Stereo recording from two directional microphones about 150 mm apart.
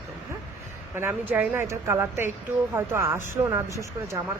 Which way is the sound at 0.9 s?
15° right (ahead or behind).